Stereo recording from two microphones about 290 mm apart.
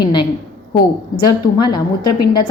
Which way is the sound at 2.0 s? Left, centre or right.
Left.